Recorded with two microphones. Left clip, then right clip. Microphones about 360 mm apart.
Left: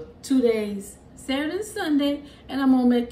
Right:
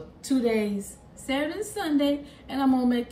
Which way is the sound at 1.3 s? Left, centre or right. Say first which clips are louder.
Left 1 dB; centre.